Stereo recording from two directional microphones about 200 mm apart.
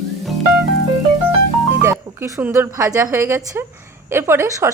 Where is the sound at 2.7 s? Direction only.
15° right (ahead or behind).